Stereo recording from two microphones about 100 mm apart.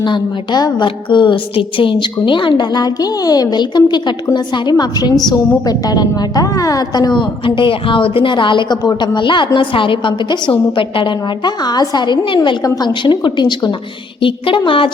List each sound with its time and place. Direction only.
0.0 s a woman's voice: 45° left (ahead or behind)
14.2 s a woman's voice: 60° left (ahead or behind)